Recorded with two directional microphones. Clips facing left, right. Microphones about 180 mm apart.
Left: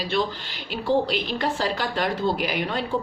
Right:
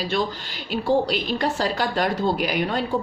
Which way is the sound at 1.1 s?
40° right (ahead or behind).